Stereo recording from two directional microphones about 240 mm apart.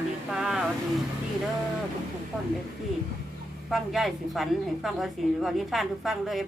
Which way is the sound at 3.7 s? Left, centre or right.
Centre.